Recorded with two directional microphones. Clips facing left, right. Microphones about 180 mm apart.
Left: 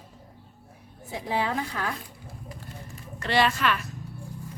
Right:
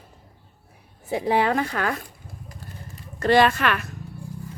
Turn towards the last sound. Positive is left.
turn(degrees=-60)  # may be behind; listen again after turning